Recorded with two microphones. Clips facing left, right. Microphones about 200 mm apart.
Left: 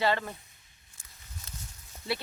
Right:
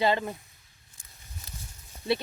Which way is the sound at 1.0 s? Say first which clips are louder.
Right 1 dB; 15° right (ahead or behind).